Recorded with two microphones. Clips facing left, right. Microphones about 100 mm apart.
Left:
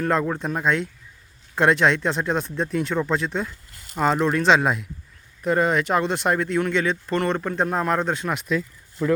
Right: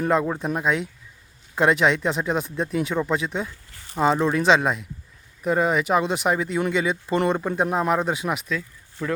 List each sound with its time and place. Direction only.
0.0 s speech: 5° right (ahead or behind)